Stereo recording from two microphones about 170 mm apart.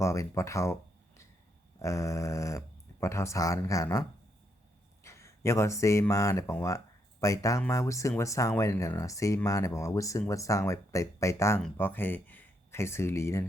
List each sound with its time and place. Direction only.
0.0 s speech: 20° left (ahead or behind)
5.0 s speech: 15° left (ahead or behind)